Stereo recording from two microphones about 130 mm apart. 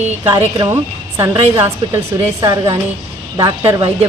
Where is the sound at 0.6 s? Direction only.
20° right (ahead or behind).